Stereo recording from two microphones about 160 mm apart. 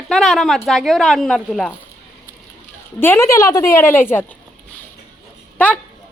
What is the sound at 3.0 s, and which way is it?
A woman's voice, 15° left (ahead or behind).